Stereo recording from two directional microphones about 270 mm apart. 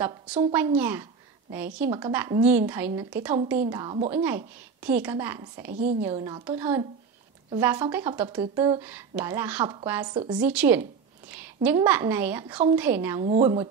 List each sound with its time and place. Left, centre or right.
0.0 s a woman's voice: centre
3.7 s a woman's voice: centre
4.1 s a woman's voice: centre
6.1 s a woman's voice: centre
6.4 s a woman's voice: centre
10.1 s a woman's voice: centre
10.4 s a woman's voice: centre
13.2 s a woman's voice: right